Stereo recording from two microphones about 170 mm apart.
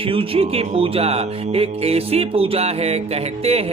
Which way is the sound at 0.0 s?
35° right (ahead or behind).